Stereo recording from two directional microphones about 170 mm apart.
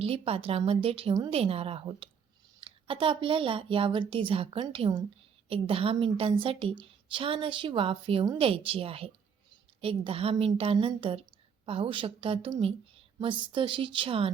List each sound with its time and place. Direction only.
0.0 s a woman's voice: 35° right (ahead or behind)